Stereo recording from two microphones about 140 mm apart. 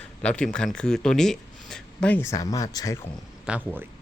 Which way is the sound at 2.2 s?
25° left (ahead or behind).